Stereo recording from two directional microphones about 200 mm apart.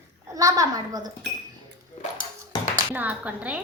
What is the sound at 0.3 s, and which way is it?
Speech, 15° right (ahead or behind).